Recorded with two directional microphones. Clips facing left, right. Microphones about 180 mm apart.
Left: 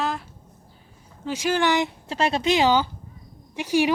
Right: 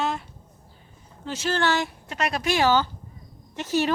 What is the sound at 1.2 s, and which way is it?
Speech, 10° left (ahead or behind).